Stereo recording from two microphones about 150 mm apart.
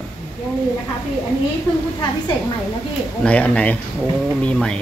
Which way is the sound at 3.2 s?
10° left (ahead or behind).